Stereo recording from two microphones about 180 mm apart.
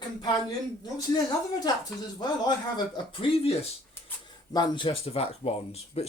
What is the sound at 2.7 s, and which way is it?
Speech, 25° left (ahead or behind).